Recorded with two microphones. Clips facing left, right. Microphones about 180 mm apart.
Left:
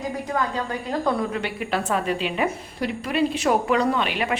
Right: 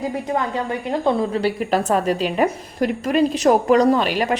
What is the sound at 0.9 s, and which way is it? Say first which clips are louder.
A woman's voice: right 4 dB; 30° right (ahead or behind).